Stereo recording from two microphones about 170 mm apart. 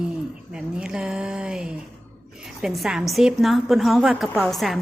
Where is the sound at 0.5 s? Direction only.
5° right (ahead or behind).